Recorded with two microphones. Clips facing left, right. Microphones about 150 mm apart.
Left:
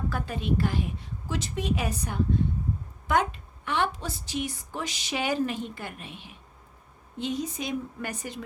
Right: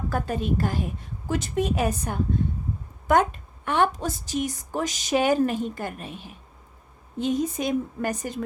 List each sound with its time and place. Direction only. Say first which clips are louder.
0.1 s a woman's voice: right 3 dB; 45° right (ahead or behind)